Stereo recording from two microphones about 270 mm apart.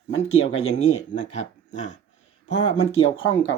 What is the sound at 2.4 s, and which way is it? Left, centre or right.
Speech, left.